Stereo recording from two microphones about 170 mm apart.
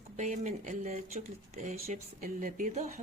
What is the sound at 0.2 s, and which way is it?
Speech, 45° right (ahead or behind).